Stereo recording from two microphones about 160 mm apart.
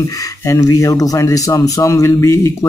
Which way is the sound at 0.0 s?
20° left (ahead or behind).